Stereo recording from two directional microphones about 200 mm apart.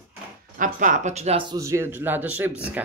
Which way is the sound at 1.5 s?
15° right (ahead or behind).